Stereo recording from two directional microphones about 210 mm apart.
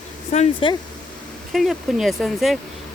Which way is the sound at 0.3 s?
30° left (ahead or behind).